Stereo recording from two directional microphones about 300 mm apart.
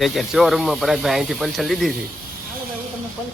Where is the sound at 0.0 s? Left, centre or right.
Centre.